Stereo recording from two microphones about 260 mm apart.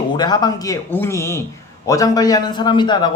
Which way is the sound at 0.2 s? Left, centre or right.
Centre.